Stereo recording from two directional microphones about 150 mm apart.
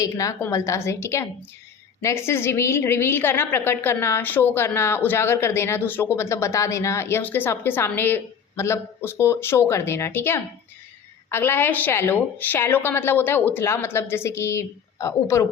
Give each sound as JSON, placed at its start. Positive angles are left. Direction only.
{"t": 0.0, "sound": "a woman's voice", "side_deg": 20}